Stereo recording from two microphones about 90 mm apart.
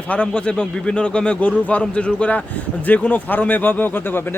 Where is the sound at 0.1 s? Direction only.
15° left (ahead or behind).